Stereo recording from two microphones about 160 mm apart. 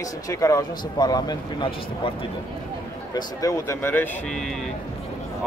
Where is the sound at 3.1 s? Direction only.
20° left (ahead or behind); by 4.7 s centre (ahead or behind).